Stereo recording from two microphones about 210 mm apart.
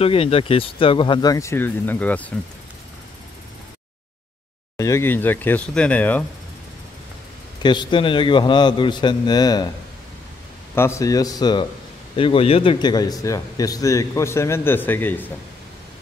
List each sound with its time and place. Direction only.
0.0 s speech: 30° left (ahead or behind); by 2.3 s 5° left (ahead or behind)
4.7 s a man's voice: 15° left (ahead or behind)
7.6 s speech: 20° left (ahead or behind)
10.7 s a man's voice: 10° left (ahead or behind)